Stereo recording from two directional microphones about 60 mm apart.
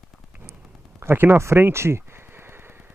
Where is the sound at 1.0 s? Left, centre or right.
Right.